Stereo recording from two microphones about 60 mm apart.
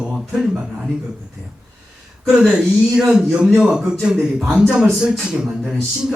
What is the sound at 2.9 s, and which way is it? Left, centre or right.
A man's voice, centre.